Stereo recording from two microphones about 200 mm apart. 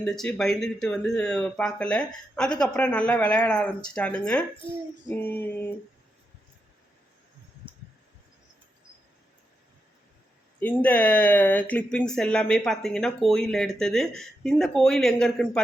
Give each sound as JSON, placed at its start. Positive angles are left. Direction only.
{"t": 0.0, "sound": "speech", "side_deg": 5}
{"t": 5.0, "sound": "female singing", "side_deg": 10}
{"t": 7.6, "sound": "heart sounds", "side_deg": -25}
{"t": 10.6, "sound": "speech", "side_deg": 10}